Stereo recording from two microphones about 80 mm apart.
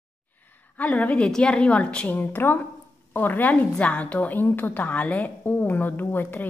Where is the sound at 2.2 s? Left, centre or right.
Left.